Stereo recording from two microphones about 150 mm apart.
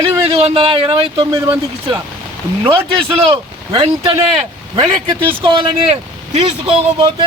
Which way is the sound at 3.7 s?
40° right (ahead or behind).